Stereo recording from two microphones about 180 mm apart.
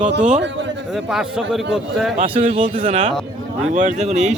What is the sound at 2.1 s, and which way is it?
Speech, 40° right (ahead or behind).